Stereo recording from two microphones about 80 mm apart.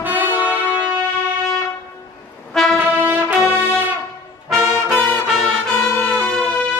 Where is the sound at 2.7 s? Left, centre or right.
Right.